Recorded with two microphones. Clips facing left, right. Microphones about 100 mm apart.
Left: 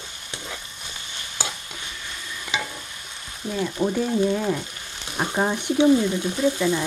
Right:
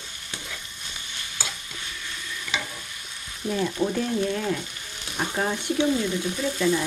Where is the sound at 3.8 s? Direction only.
15° left (ahead or behind).